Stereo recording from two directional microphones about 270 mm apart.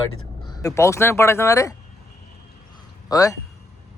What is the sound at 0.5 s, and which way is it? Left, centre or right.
Speech, centre.